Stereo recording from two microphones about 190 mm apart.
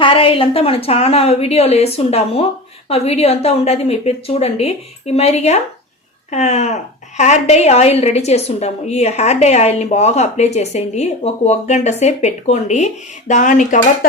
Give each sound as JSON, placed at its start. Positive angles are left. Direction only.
{"t": 0.0, "sound": "a woman's voice", "side_deg": 30}